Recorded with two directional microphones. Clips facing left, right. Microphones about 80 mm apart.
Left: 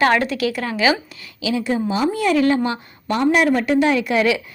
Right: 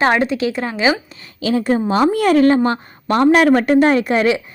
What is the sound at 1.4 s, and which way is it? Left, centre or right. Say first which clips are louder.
A woman's voice: right 4 dB; right.